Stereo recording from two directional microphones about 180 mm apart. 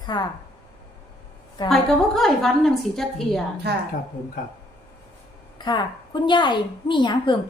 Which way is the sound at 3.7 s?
65° right (ahead or behind).